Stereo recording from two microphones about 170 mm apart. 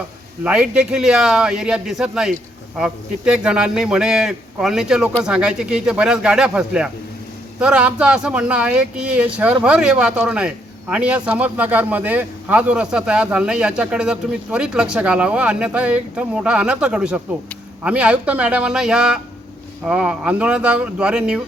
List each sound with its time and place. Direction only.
0.4 s a man's voice: 5° right (ahead or behind)